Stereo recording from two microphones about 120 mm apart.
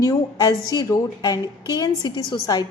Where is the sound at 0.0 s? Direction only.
30° left (ahead or behind).